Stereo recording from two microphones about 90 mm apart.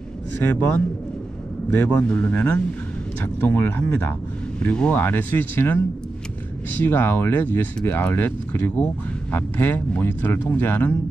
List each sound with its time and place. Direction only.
0.5 s a man's voice: 20° left (ahead or behind)
6.8 s speech: 25° left (ahead or behind)